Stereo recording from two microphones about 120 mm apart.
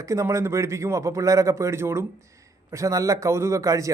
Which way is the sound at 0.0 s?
25° right (ahead or behind).